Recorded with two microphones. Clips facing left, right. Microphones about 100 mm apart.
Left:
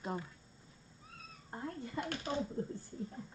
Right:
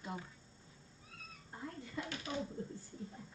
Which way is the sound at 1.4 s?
50° left (ahead or behind).